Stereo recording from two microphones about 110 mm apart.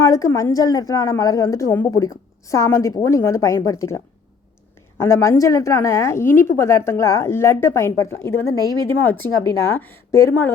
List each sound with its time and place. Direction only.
0.0 s a woman's voice: 25° left (ahead or behind)